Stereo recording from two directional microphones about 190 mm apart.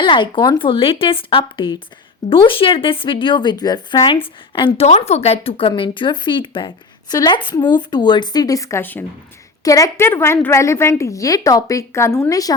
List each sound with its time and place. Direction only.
0.0 s a woman's voice: 25° left (ahead or behind)